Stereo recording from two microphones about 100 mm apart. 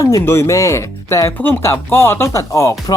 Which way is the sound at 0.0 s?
30° left (ahead or behind).